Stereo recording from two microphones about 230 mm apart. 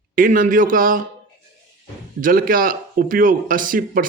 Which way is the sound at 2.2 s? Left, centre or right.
Right.